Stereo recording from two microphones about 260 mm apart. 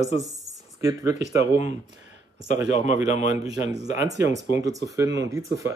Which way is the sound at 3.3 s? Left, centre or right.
Centre.